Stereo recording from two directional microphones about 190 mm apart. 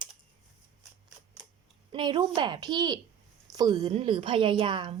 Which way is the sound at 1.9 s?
25° right (ahead or behind).